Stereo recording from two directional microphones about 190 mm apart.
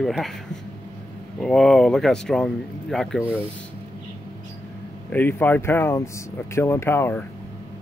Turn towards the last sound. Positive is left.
turn(degrees=10)  # may be behind; listen again after turning